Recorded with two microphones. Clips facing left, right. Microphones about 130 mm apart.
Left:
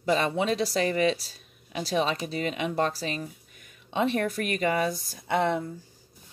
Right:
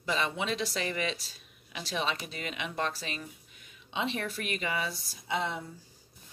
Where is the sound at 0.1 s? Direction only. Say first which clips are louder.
Left 7 dB; 40° left (ahead or behind); by 5.6 s 55° left (ahead or behind).